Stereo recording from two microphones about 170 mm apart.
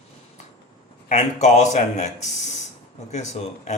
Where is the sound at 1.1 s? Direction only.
45° left (ahead or behind).